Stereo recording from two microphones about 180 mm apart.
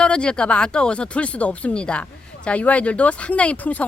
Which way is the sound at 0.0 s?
5° left (ahead or behind).